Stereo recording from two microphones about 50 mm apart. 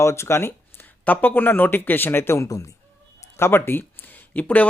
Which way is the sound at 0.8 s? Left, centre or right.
Left.